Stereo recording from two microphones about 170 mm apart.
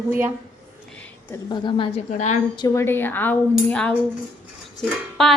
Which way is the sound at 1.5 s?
30° left (ahead or behind).